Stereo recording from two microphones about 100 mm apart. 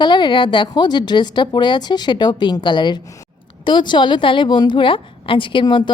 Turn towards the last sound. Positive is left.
turn(degrees=50)  # may be behind; listen again after turning